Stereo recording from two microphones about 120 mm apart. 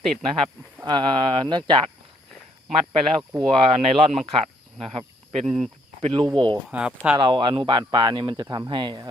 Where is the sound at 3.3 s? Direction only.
50° right (ahead or behind).